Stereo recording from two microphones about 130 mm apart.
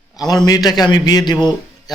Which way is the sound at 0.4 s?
30° left (ahead or behind).